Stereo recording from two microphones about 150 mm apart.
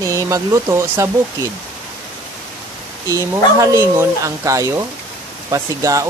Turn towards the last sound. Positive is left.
turn(degrees=-25)  # may be behind; listen again after turning